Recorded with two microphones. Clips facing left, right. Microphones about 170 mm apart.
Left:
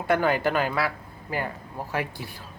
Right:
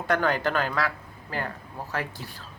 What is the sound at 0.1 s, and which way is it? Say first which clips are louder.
Speech: left 2 dB; 10° left (ahead or behind).